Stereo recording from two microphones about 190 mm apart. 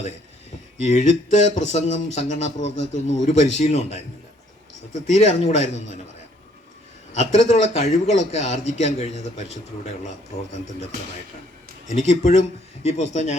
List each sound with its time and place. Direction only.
0.8 s a man's voice: 35° left (ahead or behind)
7.1 s a man's voice: 35° left (ahead or behind)
11.9 s a man's voice: 35° left (ahead or behind)